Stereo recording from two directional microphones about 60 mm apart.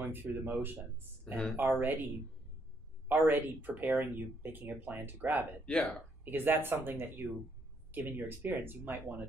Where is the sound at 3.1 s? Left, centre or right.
Right.